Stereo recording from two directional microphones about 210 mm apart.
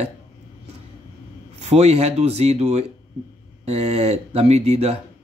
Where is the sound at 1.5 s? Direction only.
30° right (ahead or behind).